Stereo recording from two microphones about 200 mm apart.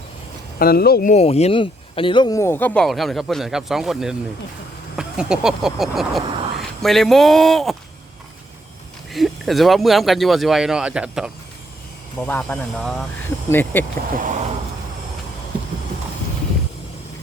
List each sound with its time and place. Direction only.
0.6 s speech: 50° left (ahead or behind)
1.1 s speech: 30° left (ahead or behind); by 7.8 s centre (ahead or behind)
9.1 s speech: centre (ahead or behind)
12.2 s speech: 10° left (ahead or behind)
14.2 s a sound: 40° right (ahead or behind)